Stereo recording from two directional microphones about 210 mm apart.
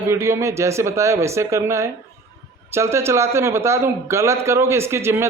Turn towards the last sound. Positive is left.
turn(degrees=-10)  # may be behind; listen again after turning